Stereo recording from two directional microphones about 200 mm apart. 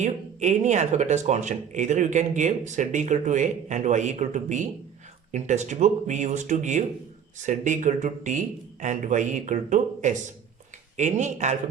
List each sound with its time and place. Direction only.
0.0 s speech: 35° right (ahead or behind)